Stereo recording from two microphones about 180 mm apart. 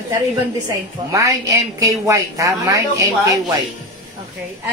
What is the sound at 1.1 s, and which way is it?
A woman's voice, 20° right (ahead or behind).